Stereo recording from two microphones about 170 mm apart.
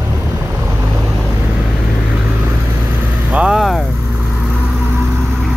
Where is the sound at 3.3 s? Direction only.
5° right (ahead or behind).